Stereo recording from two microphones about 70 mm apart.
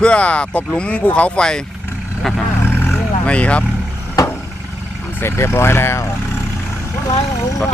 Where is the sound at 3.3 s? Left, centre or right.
Centre.